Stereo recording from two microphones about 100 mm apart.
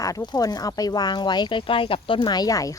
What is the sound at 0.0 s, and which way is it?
Speech, 40° left (ahead or behind).